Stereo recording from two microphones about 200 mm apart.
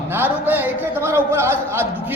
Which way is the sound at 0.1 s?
10° right (ahead or behind).